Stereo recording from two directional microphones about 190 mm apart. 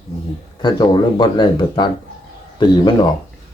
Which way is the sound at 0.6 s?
25° left (ahead or behind).